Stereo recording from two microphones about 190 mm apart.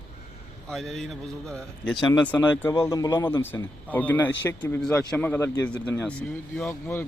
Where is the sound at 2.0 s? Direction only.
25° left (ahead or behind).